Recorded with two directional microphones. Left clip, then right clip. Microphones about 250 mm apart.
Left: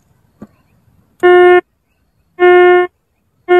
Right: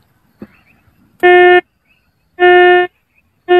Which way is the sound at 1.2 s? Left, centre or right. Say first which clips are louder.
Even; centre.